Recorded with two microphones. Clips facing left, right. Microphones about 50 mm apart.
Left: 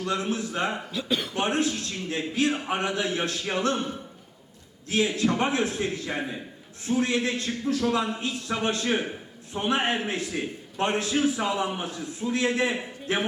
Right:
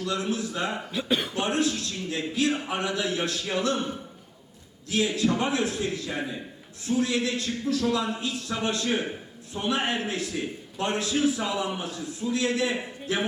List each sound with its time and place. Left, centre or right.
0.0 s a man's voice: left
0.9 s speech: right
1.4 s a man's voice: left
4.9 s a man's voice: left